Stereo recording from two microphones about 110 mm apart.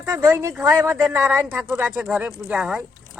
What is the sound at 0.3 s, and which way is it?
Speech, 20° right (ahead or behind).